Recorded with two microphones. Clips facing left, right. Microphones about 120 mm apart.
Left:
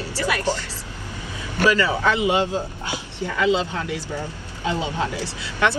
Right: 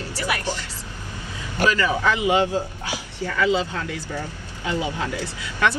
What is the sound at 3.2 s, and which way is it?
Speech, 20° left (ahead or behind).